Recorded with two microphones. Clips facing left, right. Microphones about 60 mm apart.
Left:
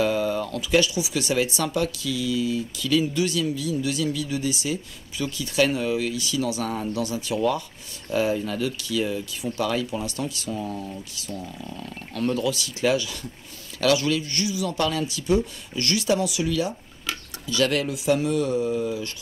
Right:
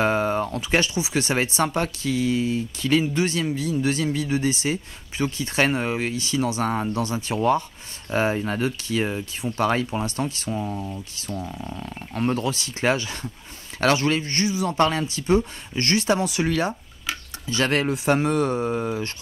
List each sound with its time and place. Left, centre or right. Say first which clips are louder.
0.0 s speech: right 2 dB; right
11.1 s speech: right 3 dB; right